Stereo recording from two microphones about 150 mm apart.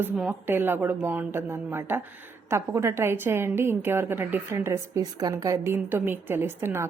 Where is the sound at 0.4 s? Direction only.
15° right (ahead or behind).